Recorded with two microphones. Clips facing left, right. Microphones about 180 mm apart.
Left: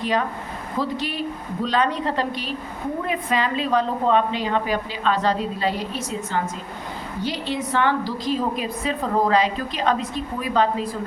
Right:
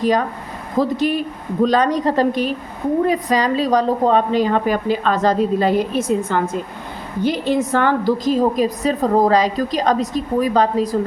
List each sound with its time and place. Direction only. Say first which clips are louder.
0.8 s a woman's voice: right 8 dB; 45° right (ahead or behind)